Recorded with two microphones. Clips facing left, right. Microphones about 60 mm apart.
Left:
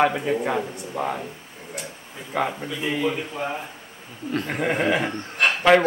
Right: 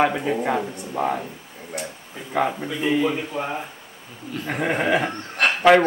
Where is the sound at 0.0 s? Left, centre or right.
Centre.